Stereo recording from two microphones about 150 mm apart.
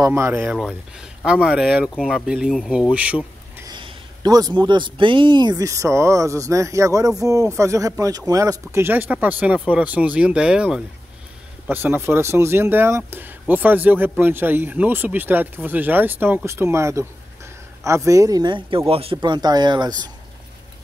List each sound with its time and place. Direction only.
0.0 s speech: 15° right (ahead or behind)
0.5 s speech: 5° right (ahead or behind)
3.6 s a man's voice: 30° right (ahead or behind)